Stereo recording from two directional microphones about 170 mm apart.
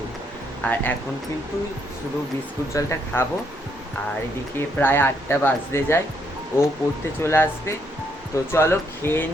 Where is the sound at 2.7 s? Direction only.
15° left (ahead or behind).